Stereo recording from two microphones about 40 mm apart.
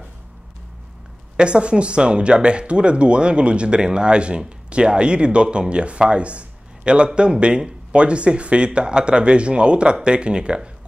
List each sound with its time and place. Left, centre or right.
1.3 s speech: right